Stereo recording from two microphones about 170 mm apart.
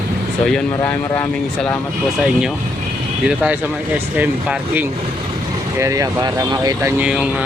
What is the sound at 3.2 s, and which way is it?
Speech, 5° right (ahead or behind).